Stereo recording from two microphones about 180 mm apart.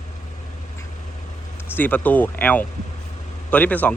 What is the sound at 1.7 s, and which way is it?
Speech, 10° left (ahead or behind).